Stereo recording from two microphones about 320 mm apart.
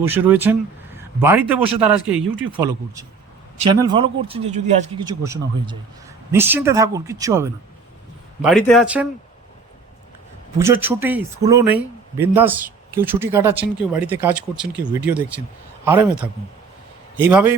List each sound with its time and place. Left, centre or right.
0.0 s a man's voice: centre
10.6 s a man's voice: centre